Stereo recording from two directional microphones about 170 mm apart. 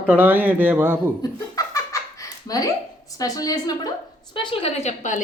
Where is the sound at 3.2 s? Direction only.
20° left (ahead or behind).